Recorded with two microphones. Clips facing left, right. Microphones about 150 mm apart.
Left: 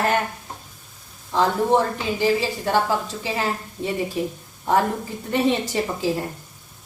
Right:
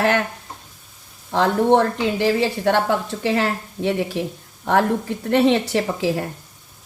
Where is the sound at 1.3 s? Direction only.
65° right (ahead or behind).